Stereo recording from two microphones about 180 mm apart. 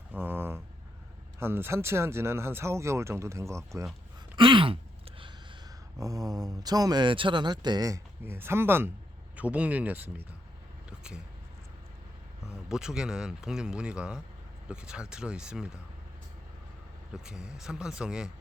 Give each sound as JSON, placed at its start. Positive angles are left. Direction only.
{"t": 0.1, "sound": "a sound", "side_deg": -10}
{"t": 1.4, "sound": "speech", "side_deg": -15}
{"t": 4.4, "sound": "speech", "side_deg": -25}
{"t": 6.0, "sound": "speech", "side_deg": -20}
{"t": 10.8, "sound": "a sound", "side_deg": -5}
{"t": 12.6, "sound": "speech", "side_deg": -5}
{"t": 17.2, "sound": "speech", "side_deg": -5}